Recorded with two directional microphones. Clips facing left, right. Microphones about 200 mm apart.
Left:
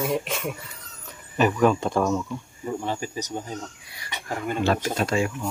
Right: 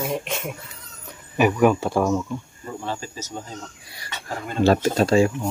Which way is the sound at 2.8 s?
15° left (ahead or behind).